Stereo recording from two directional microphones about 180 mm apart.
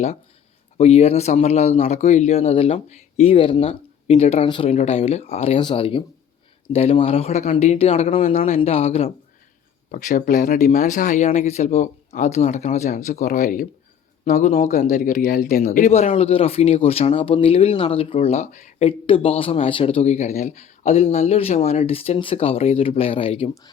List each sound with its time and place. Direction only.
0.8 s speech: 35° left (ahead or behind)
9.9 s speech: 50° left (ahead or behind); by 23.5 s 30° left (ahead or behind)